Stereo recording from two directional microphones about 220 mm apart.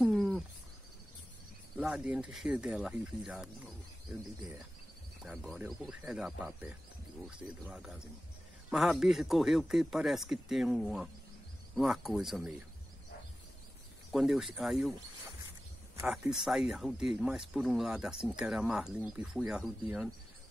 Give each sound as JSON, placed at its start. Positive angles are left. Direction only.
{"t": 0.0, "sound": "cricket", "side_deg": -5}
{"t": 1.8, "sound": "speech", "side_deg": -5}
{"t": 5.2, "sound": "speech", "side_deg": 0}
{"t": 14.1, "sound": "speech", "side_deg": 0}
{"t": 16.0, "sound": "speech", "side_deg": -5}